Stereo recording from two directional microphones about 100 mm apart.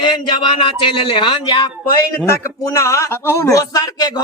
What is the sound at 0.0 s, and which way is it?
Speech, 50° left (ahead or behind).